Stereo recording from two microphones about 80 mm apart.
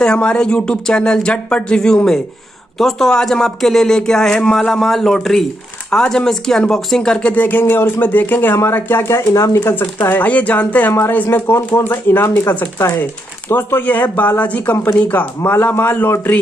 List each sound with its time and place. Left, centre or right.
0.0 s speech: centre
10.9 s speech: left
12.7 s speech: left